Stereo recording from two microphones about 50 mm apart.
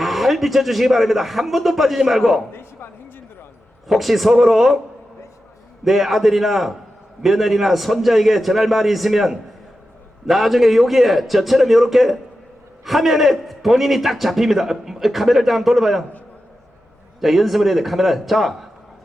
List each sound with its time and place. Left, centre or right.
0.0 s a man's voice: centre
2.5 s a sound: left
3.8 s a man's voice: centre
5.8 s a man's voice: centre
17.2 s a man's voice: centre